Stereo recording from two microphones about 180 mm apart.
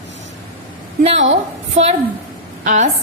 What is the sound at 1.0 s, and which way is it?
Speech, 35° right (ahead or behind).